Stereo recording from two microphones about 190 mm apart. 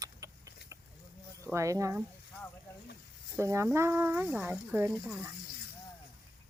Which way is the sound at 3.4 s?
15° right (ahead or behind).